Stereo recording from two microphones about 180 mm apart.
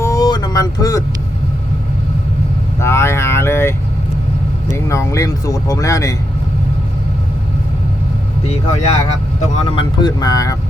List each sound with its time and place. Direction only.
0.0 s vehicle: 20° left (ahead or behind)
2.8 s vehicle: 15° left (ahead or behind)
4.9 s speech: 15° left (ahead or behind)
8.4 s speech: 35° left (ahead or behind)
9.6 s speech: 25° left (ahead or behind)